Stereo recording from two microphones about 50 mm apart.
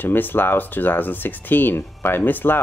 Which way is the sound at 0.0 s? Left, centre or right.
Left.